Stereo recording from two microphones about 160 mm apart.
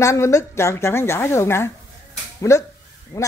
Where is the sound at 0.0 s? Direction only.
20° left (ahead or behind).